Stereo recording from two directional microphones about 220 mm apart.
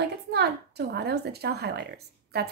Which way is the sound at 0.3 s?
50° right (ahead or behind).